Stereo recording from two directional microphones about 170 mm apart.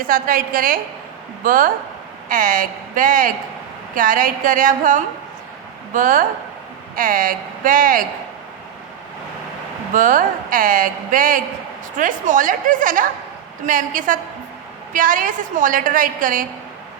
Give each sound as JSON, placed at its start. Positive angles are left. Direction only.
{"t": 0.0, "sound": "a woman's voice", "side_deg": -55}
{"t": 9.9, "sound": "a woman's voice", "side_deg": -50}